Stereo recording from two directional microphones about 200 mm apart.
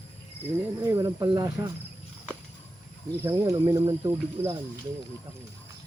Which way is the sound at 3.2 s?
15° right (ahead or behind).